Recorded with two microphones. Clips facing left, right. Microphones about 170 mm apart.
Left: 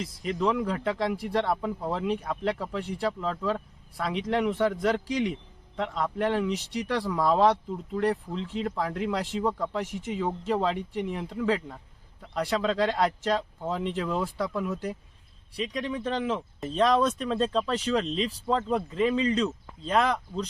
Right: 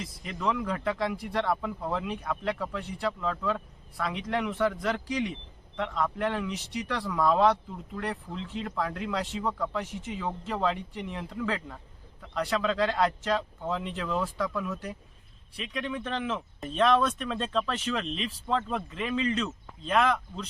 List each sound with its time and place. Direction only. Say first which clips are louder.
0.3 s speech: left 3 dB; 30° left (ahead or behind)